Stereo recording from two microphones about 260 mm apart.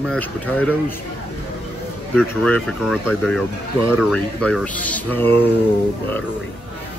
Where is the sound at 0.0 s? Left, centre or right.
Centre.